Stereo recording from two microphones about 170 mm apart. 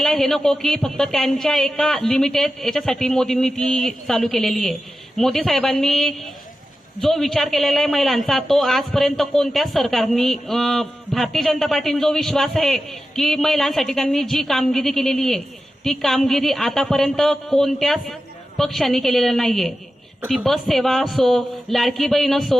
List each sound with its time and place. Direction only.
0.0 s a man's voice: 5° left (ahead or behind)